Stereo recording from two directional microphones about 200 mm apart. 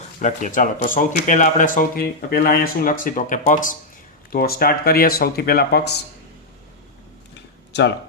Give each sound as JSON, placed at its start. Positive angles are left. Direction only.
{"t": 0.2, "sound": "speech", "side_deg": 40}